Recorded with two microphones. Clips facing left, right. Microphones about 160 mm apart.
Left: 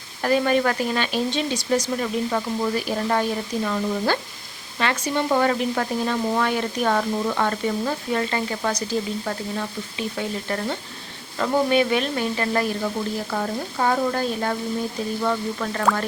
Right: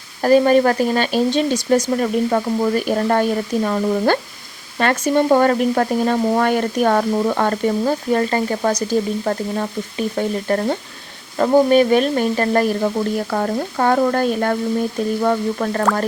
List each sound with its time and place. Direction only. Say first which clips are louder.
0.2 s speech: right 7 dB; 40° right (ahead or behind)
13.1 s speech: right 6 dB; 55° right (ahead or behind)
15.2 s speech: right 5 dB; 45° right (ahead or behind)